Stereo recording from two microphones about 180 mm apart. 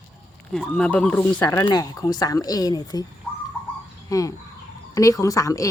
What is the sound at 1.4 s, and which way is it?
Speech, 20° left (ahead or behind).